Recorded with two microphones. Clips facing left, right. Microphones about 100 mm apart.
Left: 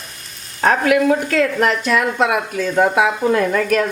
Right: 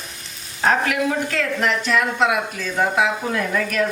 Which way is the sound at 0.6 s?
50° left (ahead or behind).